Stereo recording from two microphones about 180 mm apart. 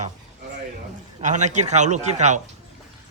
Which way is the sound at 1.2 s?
40° right (ahead or behind).